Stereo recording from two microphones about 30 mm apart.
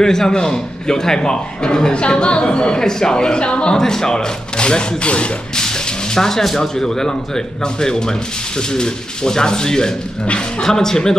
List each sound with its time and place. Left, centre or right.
0.0 s a man's voice: centre
2.8 s a man's voice: left
3.7 s a man's voice: centre
4.6 s speech: left
6.1 s a man's voice: centre